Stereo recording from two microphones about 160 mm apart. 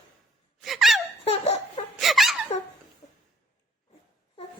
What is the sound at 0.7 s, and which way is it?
Gasp, centre (ahead or behind).